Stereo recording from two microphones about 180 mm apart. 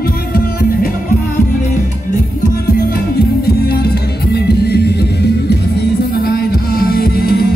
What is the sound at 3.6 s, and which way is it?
Music, 60° left (ahead or behind).